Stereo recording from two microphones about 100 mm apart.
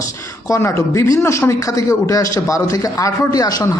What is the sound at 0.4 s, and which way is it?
A man's voice, 30° left (ahead or behind).